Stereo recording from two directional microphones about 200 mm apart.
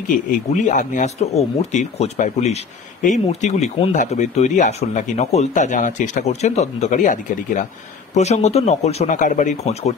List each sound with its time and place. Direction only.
0.3 s speech: 40° left (ahead or behind)